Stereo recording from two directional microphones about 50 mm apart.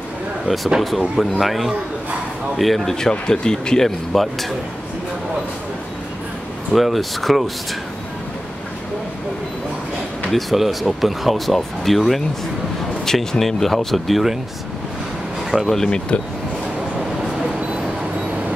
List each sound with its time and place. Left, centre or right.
0.7 s speech: centre
6.7 s speech: centre
10.3 s speech: centre
15.5 s speech: centre